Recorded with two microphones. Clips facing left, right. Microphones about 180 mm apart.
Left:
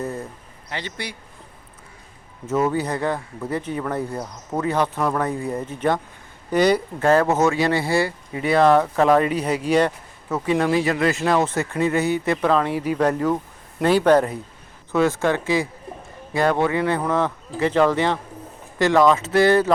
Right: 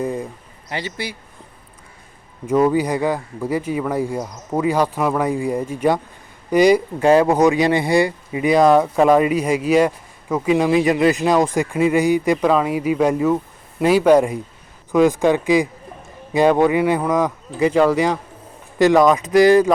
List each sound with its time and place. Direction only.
0.0 s a sound: 15° right (ahead or behind)
0.7 s a man's voice: 5° right (ahead or behind)
2.5 s speech: 10° right (ahead or behind)